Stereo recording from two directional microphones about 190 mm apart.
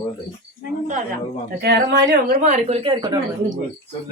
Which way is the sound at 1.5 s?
55° right (ahead or behind).